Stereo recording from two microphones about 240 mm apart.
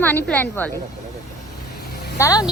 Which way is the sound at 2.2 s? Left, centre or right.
Centre.